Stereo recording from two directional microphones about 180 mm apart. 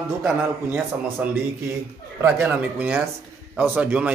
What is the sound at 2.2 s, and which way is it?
A man's voice, 10° right (ahead or behind).